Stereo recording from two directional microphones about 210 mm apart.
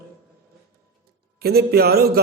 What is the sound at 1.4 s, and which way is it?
Speech, 50° right (ahead or behind).